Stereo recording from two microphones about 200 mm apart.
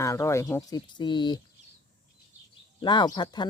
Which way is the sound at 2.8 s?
20° left (ahead or behind).